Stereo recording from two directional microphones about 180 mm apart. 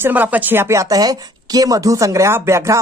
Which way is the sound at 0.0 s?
10° right (ahead or behind).